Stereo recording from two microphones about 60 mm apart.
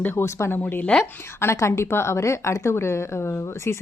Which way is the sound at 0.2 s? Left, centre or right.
Left.